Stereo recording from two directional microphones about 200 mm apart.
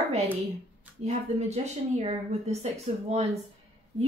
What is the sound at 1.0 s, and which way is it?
Speech, 35° right (ahead or behind).